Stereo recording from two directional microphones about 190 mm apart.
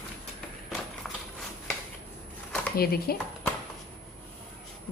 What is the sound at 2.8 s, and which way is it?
Speech, 55° left (ahead or behind).